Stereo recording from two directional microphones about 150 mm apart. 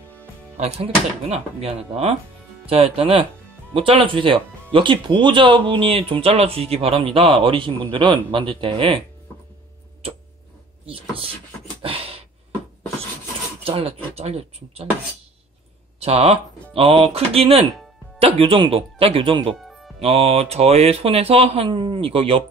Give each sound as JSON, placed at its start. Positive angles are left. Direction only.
{"t": 0.6, "sound": "speech", "side_deg": -40}
{"t": 10.9, "sound": "speech", "side_deg": -40}
{"t": 11.8, "sound": "a sound", "side_deg": -40}
{"t": 13.7, "sound": "speech", "side_deg": -40}
{"t": 16.0, "sound": "speech", "side_deg": -40}
{"t": 19.5, "sound": "music", "side_deg": 0}
{"t": 20.0, "sound": "speech", "side_deg": -40}